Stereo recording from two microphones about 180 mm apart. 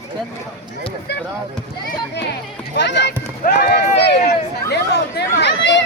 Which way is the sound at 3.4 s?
65° left (ahead or behind).